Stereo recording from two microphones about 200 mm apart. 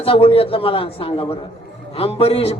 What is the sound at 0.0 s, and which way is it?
A man's voice, 30° left (ahead or behind).